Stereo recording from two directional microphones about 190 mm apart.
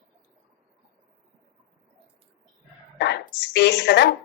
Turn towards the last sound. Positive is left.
turn(degrees=60)  # may be behind; listen again after turning